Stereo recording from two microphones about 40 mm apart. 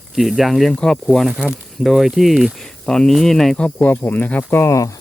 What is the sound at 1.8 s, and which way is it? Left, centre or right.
Speech, centre.